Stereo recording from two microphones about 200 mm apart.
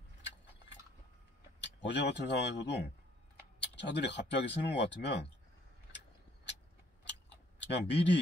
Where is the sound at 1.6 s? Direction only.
60° left (ahead or behind).